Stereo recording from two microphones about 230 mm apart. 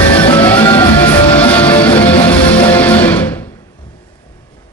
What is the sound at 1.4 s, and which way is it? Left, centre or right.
Music, centre.